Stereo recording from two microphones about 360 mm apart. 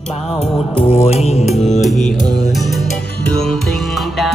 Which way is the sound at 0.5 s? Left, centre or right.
Centre.